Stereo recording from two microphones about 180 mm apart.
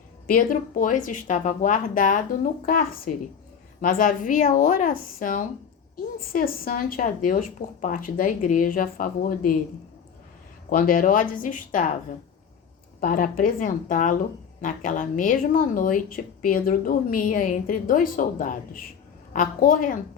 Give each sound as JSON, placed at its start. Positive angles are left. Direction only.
{"t": 0.3, "sound": "a woman's voice", "side_deg": 50}
{"t": 10.7, "sound": "a woman's voice", "side_deg": 50}
{"t": 13.0, "sound": "a woman's voice", "side_deg": 50}